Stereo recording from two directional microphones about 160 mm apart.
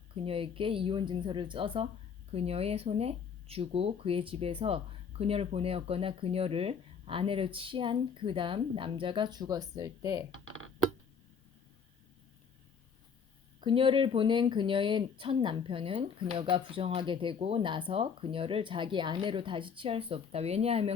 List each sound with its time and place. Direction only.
0.3 s speech: 35° right (ahead or behind)
13.6 s speech: 30° right (ahead or behind)